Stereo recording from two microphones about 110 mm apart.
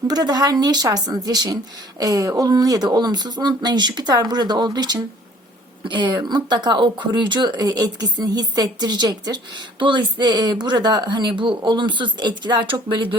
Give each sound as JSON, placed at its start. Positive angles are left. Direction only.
{"t": 0.1, "sound": "speech", "side_deg": -35}